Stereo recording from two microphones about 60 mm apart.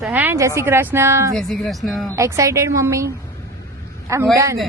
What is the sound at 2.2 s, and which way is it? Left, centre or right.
Speech, right.